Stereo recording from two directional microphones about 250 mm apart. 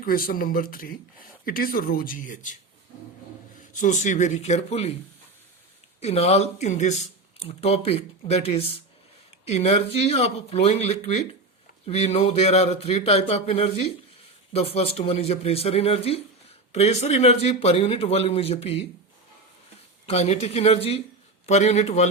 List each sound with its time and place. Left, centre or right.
0.0 s speech: left
3.6 s speech: left
6.0 s speech: left
20.1 s speech: left